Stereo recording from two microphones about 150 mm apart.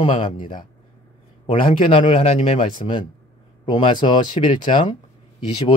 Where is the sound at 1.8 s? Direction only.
35° left (ahead or behind).